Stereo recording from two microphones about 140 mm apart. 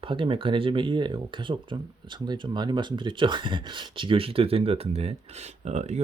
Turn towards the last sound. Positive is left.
turn(degrees=-55)  # may be behind; listen again after turning